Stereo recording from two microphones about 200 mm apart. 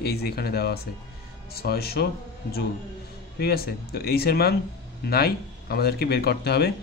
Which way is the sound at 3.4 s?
50° left (ahead or behind).